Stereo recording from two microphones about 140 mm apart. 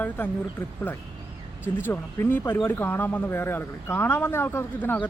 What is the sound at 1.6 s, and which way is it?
Speech, 15° left (ahead or behind).